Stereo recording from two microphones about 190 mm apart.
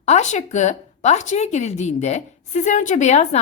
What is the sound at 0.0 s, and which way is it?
Speech, 35° left (ahead or behind).